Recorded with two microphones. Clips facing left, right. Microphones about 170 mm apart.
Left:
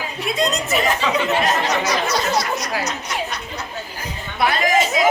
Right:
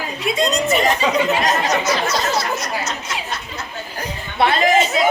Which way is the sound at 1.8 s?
10° left (ahead or behind).